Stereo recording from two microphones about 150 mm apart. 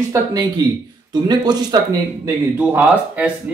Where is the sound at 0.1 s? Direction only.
25° right (ahead or behind).